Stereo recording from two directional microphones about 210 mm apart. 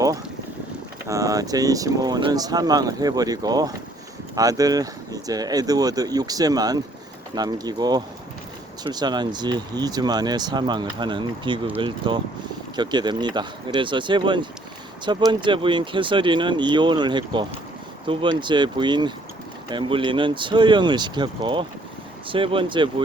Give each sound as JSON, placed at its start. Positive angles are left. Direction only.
{"t": 1.0, "sound": "speech", "side_deg": -15}